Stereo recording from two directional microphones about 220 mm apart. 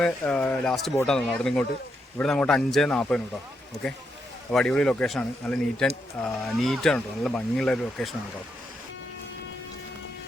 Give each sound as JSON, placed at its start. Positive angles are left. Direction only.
{"t": 0.0, "sound": "speech", "side_deg": 5}
{"t": 4.5, "sound": "speech", "side_deg": 5}